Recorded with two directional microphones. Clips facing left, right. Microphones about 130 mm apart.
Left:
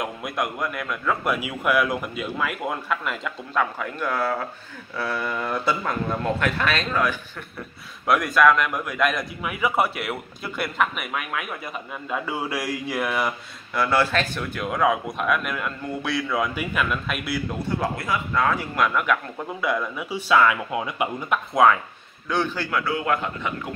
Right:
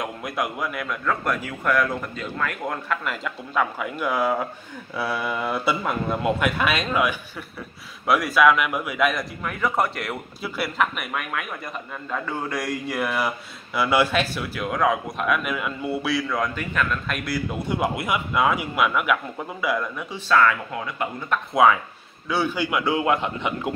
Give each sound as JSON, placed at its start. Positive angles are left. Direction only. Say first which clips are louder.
{"t": 0.0, "sound": "a man's voice", "louder": "even", "side_deg": 0}
{"t": 13.7, "sound": "a man's voice", "louder": "right 1 dB", "side_deg": -10}
{"t": 17.6, "sound": "a man's voice", "louder": "right 2 dB", "side_deg": -15}
{"t": 22.3, "sound": "a man's voice", "louder": "right 1 dB", "side_deg": -10}